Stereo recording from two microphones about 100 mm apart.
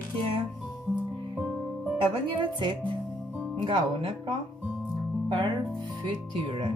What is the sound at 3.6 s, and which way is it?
Speech, 60° right (ahead or behind).